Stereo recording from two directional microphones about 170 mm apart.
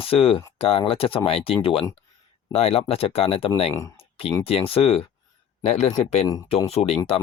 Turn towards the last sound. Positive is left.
turn(degrees=35)  # may be behind; listen again after turning